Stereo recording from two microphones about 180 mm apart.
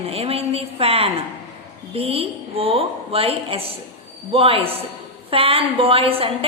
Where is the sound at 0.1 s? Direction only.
35° right (ahead or behind).